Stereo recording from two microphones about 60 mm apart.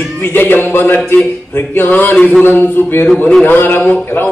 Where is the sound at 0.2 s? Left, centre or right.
Left.